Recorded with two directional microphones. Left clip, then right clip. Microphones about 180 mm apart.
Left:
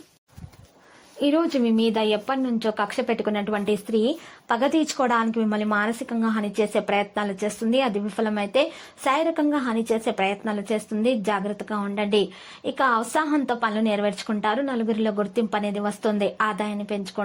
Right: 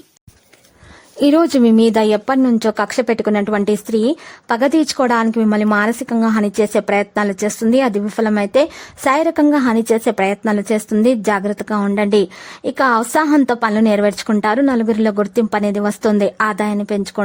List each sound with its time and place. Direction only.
1.2 s speech: 50° right (ahead or behind)